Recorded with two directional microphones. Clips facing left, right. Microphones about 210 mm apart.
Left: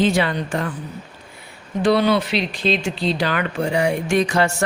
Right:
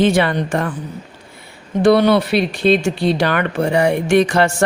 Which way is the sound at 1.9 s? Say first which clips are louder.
Right 5 dB; 60° right (ahead or behind).